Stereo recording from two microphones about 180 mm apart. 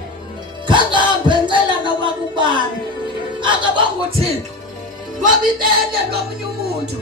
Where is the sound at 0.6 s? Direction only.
25° right (ahead or behind).